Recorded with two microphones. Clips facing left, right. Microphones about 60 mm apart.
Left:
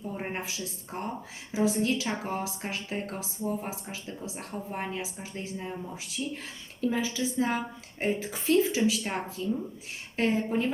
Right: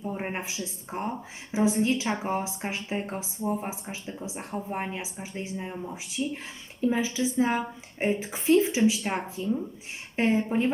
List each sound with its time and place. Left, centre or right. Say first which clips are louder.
0.0 s a woman's voice: right 2 dB; right